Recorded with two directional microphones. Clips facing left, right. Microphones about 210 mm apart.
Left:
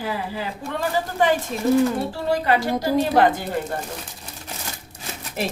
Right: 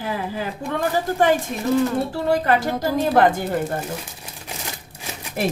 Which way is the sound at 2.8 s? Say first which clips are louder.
Right 1 dB; 50° right (ahead or behind).